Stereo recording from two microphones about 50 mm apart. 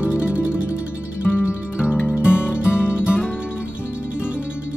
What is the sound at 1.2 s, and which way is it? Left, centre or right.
Music, left.